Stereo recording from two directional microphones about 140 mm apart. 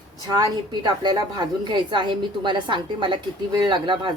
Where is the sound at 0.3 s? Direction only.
30° right (ahead or behind).